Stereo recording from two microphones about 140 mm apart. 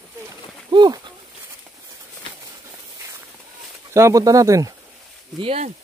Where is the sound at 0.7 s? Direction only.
30° right (ahead or behind).